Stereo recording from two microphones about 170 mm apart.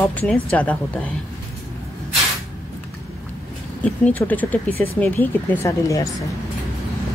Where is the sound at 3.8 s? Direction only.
10° left (ahead or behind).